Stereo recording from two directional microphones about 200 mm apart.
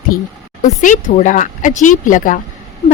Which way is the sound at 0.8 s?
40° left (ahead or behind).